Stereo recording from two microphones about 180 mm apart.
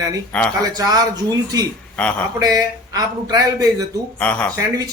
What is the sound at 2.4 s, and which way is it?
Speech, 20° right (ahead or behind).